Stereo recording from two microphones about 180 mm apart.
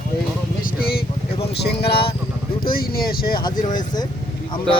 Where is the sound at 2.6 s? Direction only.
55° left (ahead or behind).